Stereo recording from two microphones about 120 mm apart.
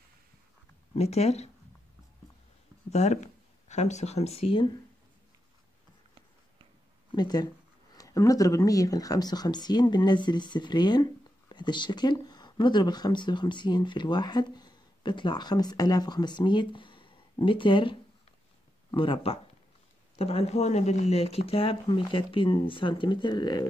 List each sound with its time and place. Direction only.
0.9 s speech: 60° left (ahead or behind)
2.9 s speech: 70° left (ahead or behind); by 4.7 s 45° left (ahead or behind)
7.1 s speech: 35° left (ahead or behind)